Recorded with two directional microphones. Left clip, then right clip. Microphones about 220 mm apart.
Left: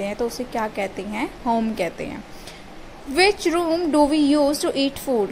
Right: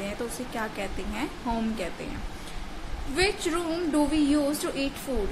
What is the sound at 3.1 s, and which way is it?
A woman's voice, 25° left (ahead or behind).